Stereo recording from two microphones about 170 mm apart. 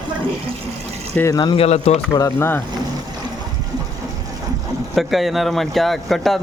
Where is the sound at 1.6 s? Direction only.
40° left (ahead or behind).